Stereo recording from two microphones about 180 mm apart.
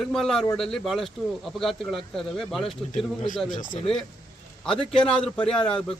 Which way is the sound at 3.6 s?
35° left (ahead or behind).